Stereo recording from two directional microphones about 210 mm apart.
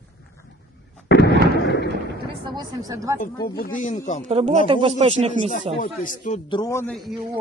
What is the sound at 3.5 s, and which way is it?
Speech, 40° left (ahead or behind).